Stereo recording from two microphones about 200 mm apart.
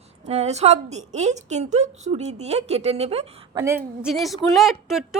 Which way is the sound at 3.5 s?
15° right (ahead or behind).